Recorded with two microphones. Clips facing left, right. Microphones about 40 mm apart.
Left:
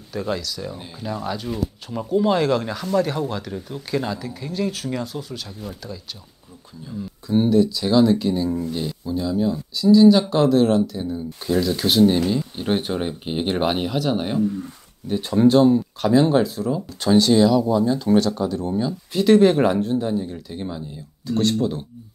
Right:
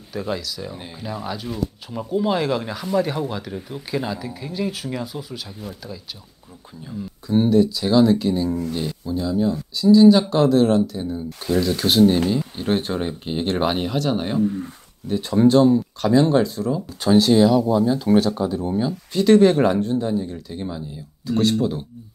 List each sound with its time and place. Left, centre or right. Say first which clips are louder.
0.1 s speech: left 1 dB; centre
6.9 s speech: even; centre
12.5 s speech: even; centre
14.4 s speech: right 1 dB; right
15.0 s speech: even; centre
19.1 s speech: right 1 dB; centre